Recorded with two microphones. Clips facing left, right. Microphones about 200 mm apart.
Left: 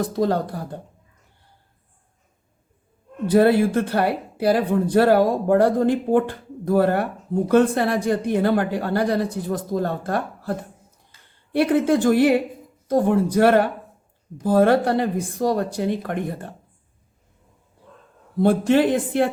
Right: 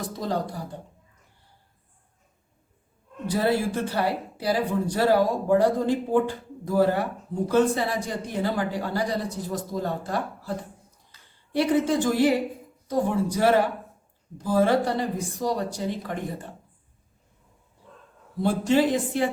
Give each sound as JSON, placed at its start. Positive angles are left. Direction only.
{"t": 0.0, "sound": "speech", "side_deg": 55}
{"t": 3.2, "sound": "speech", "side_deg": 60}
{"t": 18.3, "sound": "speech", "side_deg": 55}